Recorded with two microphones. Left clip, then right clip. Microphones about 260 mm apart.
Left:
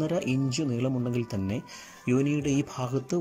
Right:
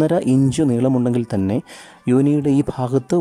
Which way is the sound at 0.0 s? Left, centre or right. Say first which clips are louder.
Right 12 dB; right.